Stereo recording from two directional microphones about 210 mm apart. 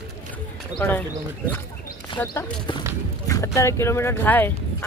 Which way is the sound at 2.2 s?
10° left (ahead or behind).